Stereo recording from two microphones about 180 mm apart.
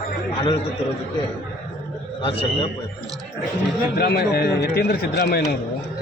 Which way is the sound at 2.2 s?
30° left (ahead or behind).